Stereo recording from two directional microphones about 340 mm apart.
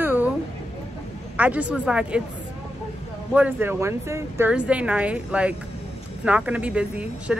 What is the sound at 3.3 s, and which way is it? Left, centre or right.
A woman's voice, centre.